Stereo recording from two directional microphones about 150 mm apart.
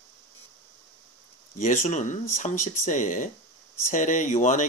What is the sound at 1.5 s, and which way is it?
Speech, 55° left (ahead or behind).